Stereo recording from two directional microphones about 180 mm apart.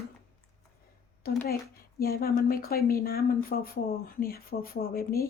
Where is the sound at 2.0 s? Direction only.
55° left (ahead or behind).